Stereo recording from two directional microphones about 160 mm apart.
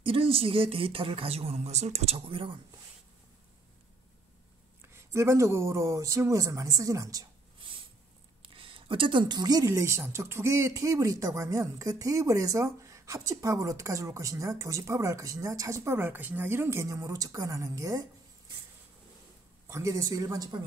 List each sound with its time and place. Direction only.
0.0 s speech: 35° right (ahead or behind)
4.8 s a woman's voice: 15° right (ahead or behind)
8.4 s a woman's voice: 35° right (ahead or behind)
19.7 s a woman's voice: 20° right (ahead or behind)